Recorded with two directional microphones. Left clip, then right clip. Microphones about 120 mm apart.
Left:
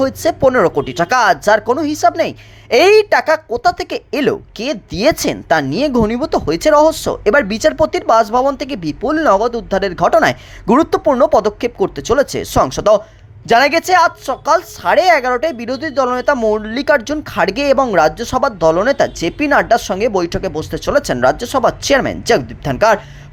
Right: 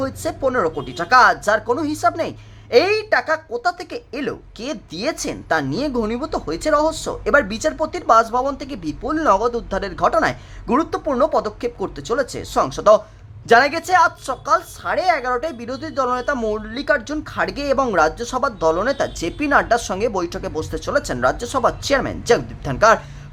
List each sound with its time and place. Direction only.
0.0 s speech: 35° left (ahead or behind)
4.6 s speech: 25° left (ahead or behind)
4.9 s speech: 45° left (ahead or behind)